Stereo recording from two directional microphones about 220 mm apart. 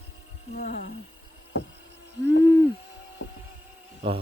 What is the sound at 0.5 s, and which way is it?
Speech, 35° left (ahead or behind).